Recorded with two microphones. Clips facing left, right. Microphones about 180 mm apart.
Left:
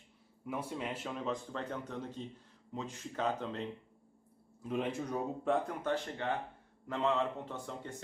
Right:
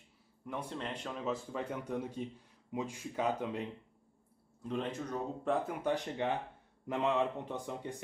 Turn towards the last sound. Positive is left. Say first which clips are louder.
# right 3 dB
turn(degrees=-15)  # may be behind; listen again after turning